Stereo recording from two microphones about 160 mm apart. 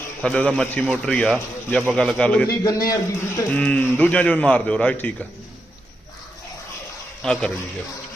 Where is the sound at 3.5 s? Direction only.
10° left (ahead or behind).